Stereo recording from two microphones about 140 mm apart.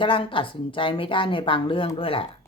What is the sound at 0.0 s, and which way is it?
Speech, 35° left (ahead or behind).